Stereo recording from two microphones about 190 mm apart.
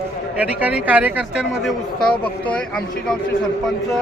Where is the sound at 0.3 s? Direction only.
5° right (ahead or behind).